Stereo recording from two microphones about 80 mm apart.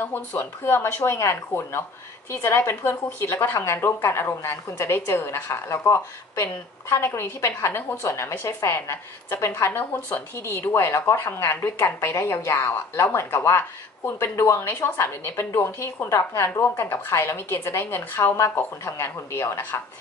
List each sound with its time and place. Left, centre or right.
0.0 s a woman's voice: left